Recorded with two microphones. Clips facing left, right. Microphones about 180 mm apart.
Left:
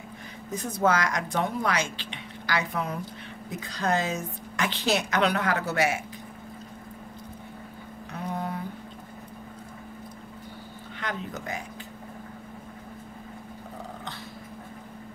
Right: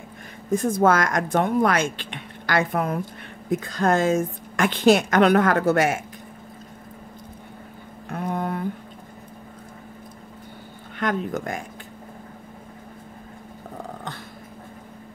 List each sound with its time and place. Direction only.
0.5 s a woman's voice: 50° right (ahead or behind)
8.1 s a sound: 50° right (ahead or behind)
11.0 s speech: 50° right (ahead or behind)